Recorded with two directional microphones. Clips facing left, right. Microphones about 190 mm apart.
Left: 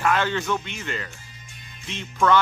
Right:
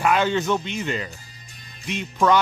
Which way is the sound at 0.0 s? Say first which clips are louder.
Right 3 dB; 15° right (ahead or behind).